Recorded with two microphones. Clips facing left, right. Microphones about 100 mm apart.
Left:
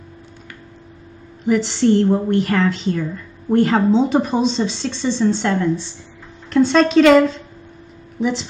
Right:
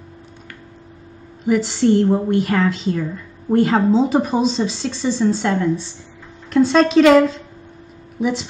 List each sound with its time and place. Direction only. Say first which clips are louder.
1.4 s a woman's voice: even; 5° right (ahead or behind)